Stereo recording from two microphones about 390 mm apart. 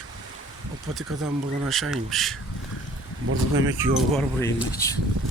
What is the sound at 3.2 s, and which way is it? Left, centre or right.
Speech, right.